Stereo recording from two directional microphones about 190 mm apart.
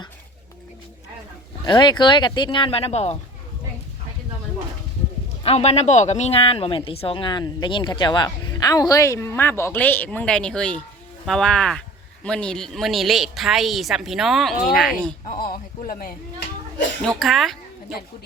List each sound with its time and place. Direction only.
1.6 s speech: 25° left (ahead or behind)
5.4 s a woman's voice: 35° left (ahead or behind); by 15.1 s 5° right (ahead or behind)
15.3 s a sound: 50° left (ahead or behind)
17.2 s a woman's voice: centre (ahead or behind)